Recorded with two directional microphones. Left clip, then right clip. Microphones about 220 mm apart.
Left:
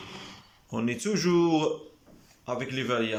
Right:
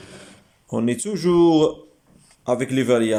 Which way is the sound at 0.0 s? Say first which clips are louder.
Even; 20° right (ahead or behind).